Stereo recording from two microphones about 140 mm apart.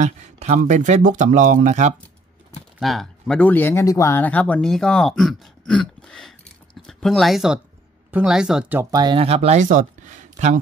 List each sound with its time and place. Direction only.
0.0 s speech: 55° right (ahead or behind)
2.8 s speech: centre (ahead or behind)
8.9 s speech: 35° right (ahead or behind); by 10.6 s 60° right (ahead or behind)